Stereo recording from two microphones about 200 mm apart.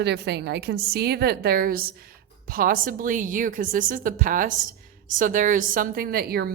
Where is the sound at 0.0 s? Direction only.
55° right (ahead or behind).